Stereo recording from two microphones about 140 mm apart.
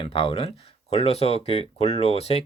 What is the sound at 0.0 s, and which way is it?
Speech, 40° left (ahead or behind).